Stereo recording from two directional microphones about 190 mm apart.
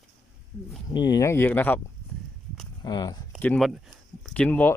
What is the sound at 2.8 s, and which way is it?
Speech, 25° left (ahead or behind).